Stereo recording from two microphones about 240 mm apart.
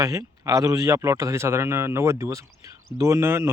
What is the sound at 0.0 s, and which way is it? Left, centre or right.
A man's voice, centre.